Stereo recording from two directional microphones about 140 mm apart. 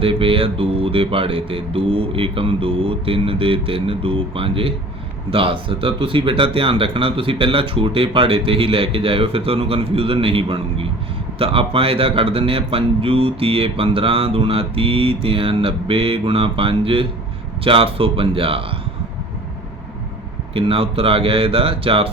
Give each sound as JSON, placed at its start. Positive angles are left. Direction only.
{"t": 0.0, "sound": "speech", "side_deg": -40}
{"t": 20.5, "sound": "speech", "side_deg": -40}